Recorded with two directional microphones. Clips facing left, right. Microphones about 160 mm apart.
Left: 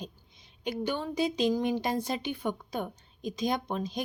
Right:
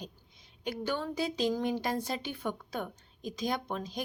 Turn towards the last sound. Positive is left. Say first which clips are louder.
# left 3 dB
turn(degrees=20)  # may be behind; listen again after turning